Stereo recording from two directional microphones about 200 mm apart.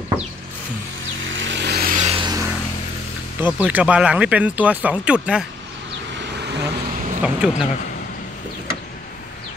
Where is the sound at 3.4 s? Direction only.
10° right (ahead or behind).